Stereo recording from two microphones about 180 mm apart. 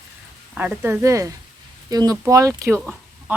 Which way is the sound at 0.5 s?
5° right (ahead or behind).